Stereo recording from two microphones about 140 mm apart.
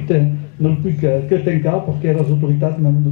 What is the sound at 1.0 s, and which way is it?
A man's voice, 15° left (ahead or behind).